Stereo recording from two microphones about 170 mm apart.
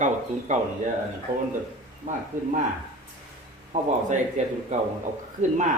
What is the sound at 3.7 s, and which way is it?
Speech, 45° right (ahead or behind).